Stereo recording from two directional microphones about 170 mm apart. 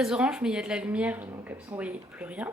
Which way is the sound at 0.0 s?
5° right (ahead or behind).